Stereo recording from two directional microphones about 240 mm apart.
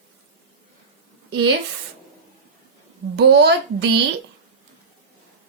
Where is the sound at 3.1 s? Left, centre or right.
Right.